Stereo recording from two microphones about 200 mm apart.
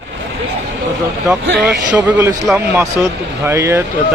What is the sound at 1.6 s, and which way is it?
A man's voice, 5° right (ahead or behind).